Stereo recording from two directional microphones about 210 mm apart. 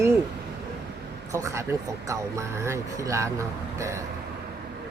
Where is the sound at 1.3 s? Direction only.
15° right (ahead or behind).